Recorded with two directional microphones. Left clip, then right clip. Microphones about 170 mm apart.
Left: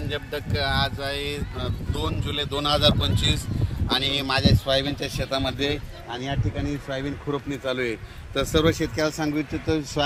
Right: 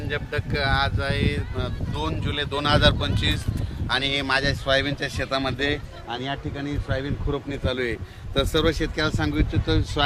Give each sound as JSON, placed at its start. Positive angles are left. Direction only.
{"t": 0.1, "sound": "speech", "side_deg": 0}
{"t": 6.9, "sound": "speech", "side_deg": 65}